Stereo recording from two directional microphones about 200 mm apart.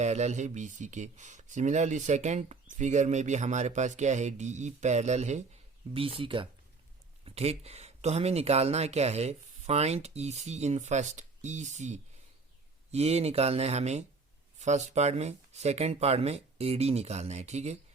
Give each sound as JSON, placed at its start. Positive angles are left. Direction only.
{"t": 0.0, "sound": "speech", "side_deg": -35}